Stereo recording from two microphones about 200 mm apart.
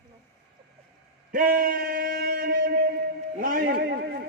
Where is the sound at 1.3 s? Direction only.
45° right (ahead or behind).